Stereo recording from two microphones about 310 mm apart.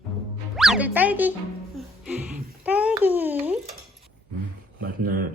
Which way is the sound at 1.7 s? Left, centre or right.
Centre.